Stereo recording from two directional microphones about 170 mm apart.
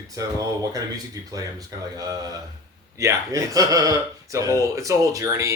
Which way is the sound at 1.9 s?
20° right (ahead or behind).